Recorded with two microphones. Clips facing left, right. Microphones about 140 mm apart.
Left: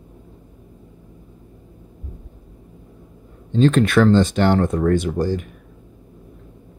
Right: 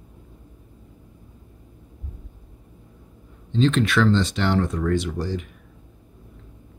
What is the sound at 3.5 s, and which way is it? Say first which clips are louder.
Speech: left 5 dB; 50° left (ahead or behind).